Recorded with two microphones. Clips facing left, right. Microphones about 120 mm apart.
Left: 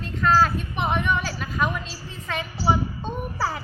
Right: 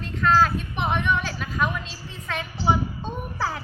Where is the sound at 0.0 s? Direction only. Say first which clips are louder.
Even; 5° left (ahead or behind).